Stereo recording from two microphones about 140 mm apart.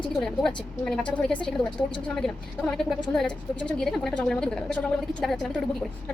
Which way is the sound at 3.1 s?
5° left (ahead or behind).